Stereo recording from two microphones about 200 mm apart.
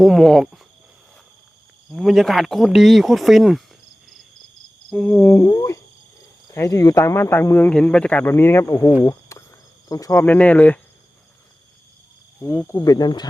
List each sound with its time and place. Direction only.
0.0 s speech: centre (ahead or behind)
1.9 s speech: centre (ahead or behind)
4.9 s speech: 5° left (ahead or behind)
9.3 s cricket: 15° left (ahead or behind)
9.9 s speech: 15° left (ahead or behind)
12.4 s speech: 10° left (ahead or behind)